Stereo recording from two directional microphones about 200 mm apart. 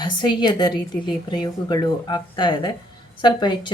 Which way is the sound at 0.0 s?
20° left (ahead or behind).